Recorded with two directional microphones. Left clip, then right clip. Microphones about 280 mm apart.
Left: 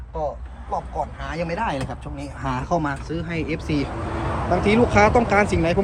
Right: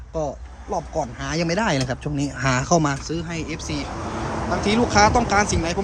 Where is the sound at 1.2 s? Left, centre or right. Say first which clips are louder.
Right 4 dB; right.